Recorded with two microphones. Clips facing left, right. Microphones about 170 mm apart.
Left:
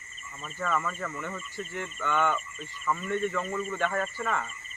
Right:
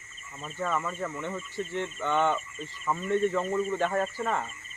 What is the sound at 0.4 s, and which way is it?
Speech, 20° right (ahead or behind).